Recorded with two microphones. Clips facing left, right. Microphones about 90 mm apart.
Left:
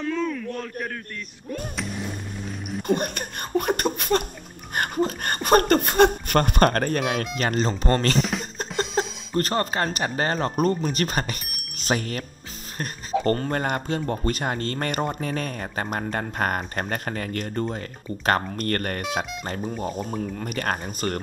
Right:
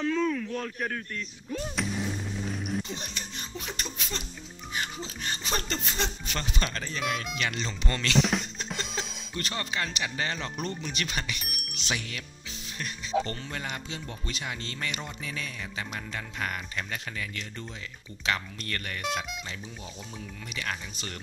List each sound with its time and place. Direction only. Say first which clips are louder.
0.0 s a sound: left 1 dB; centre (ahead or behind)
2.8 s speech: left 13 dB; 55° left (ahead or behind)
8.2 s speech: left 1 dB; centre (ahead or behind)
8.5 s speech: left 9 dB; 45° left (ahead or behind)